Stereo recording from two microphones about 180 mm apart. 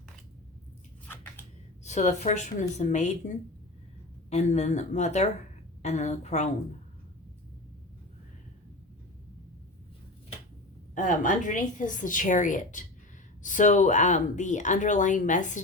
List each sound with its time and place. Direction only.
1.8 s a woman's voice: 40° left (ahead or behind)
10.9 s speech: 45° left (ahead or behind)